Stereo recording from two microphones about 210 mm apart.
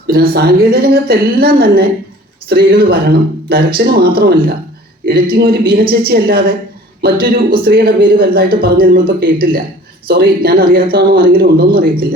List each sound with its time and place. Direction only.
0.1 s speech: 50° right (ahead or behind)